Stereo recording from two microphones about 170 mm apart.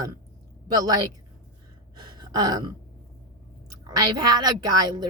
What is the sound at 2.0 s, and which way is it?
Gasp, 25° right (ahead or behind).